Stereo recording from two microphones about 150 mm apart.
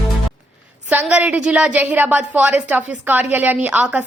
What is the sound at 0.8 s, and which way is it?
A woman's voice, 10° right (ahead or behind).